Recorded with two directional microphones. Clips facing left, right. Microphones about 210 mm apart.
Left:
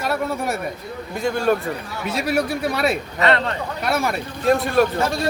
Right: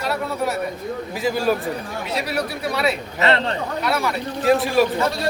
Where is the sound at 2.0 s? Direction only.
50° left (ahead or behind).